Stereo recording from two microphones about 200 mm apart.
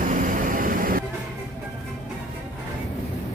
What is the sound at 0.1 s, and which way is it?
Vehicle, 40° right (ahead or behind).